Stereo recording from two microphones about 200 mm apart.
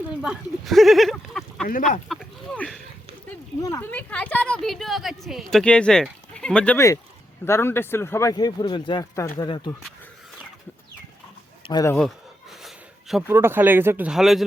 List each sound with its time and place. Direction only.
0.1 s speech: 5° right (ahead or behind)
2.0 s a sound: centre (ahead or behind)
3.2 s a woman's voice: 15° left (ahead or behind)
11.7 s speech: 15° left (ahead or behind)
11.9 s a sound: centre (ahead or behind)
13.2 s speech: 10° right (ahead or behind)